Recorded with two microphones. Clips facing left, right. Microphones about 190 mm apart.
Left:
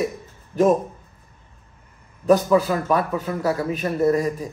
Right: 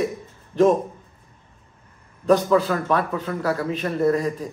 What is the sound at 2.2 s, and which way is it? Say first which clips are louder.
A man's voice: left 1 dB; 5° left (ahead or behind).